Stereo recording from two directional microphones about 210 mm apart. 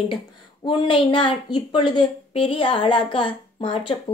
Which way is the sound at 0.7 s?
25° left (ahead or behind).